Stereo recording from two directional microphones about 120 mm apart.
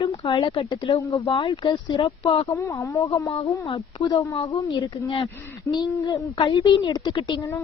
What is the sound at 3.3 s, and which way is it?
Speech, 50° left (ahead or behind).